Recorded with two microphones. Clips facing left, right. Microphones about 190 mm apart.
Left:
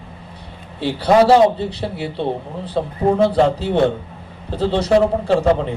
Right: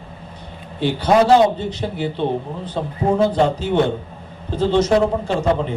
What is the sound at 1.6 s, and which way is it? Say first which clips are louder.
A man's voice: even; 35° left (ahead or behind).